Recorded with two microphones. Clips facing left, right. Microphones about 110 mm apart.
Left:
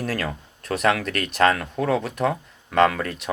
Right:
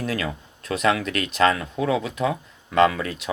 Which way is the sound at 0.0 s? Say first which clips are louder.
Even; 60° left (ahead or behind).